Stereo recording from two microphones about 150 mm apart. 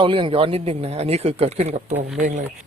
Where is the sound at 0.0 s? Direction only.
35° right (ahead or behind).